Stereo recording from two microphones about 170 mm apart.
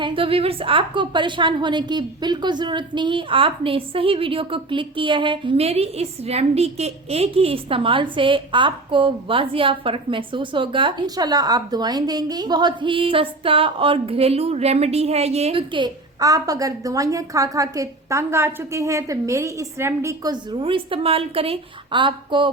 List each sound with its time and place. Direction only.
0.0 s a woman's voice: 30° right (ahead or behind)